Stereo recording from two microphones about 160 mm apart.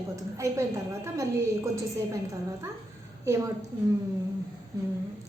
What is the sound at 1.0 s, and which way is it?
Speech, 20° right (ahead or behind).